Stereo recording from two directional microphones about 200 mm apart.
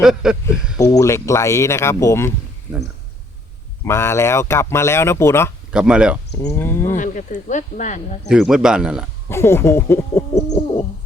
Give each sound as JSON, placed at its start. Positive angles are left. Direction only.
{"t": 0.0, "sound": "speech", "side_deg": -5}
{"t": 0.8, "sound": "speech", "side_deg": 15}
{"t": 3.8, "sound": "speech", "side_deg": 10}
{"t": 5.7, "sound": "speech", "side_deg": -5}
{"t": 6.4, "sound": "speech", "side_deg": 15}
{"t": 6.9, "sound": "speech", "side_deg": 40}
{"t": 8.3, "sound": "speech", "side_deg": -5}
{"t": 9.3, "sound": "speech", "side_deg": 10}